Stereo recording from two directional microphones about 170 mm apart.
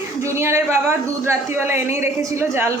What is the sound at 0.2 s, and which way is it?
A man's voice, 15° right (ahead or behind).